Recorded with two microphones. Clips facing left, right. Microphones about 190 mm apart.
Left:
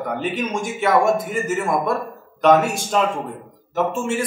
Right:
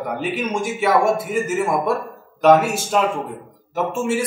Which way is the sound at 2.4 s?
5° right (ahead or behind).